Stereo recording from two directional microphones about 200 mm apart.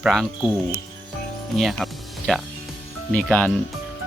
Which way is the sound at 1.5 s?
Centre (ahead or behind).